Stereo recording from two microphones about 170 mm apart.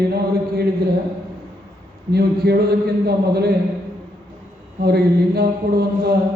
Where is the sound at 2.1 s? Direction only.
65° right (ahead or behind).